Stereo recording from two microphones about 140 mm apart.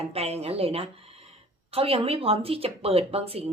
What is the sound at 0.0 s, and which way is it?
Speech, 45° right (ahead or behind).